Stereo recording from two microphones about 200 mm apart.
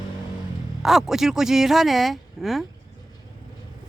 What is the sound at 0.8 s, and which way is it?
Speech, centre (ahead or behind).